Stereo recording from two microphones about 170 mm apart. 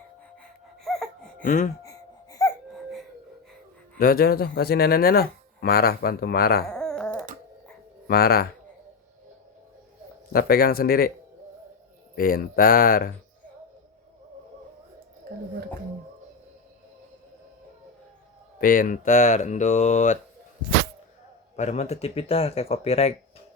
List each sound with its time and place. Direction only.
0.9 s a sound: centre (ahead or behind)
1.4 s a sound: 50° left (ahead or behind)
1.8 s a sound: 20° left (ahead or behind)
3.9 s speech: 60° left (ahead or behind)
6.7 s dog: 5° left (ahead or behind)
8.0 s speech: 65° left (ahead or behind)
10.3 s speech: 65° left (ahead or behind)
12.1 s speech: 60° left (ahead or behind)
18.6 s speech: 55° left (ahead or behind)
21.5 s speech: 40° left (ahead or behind)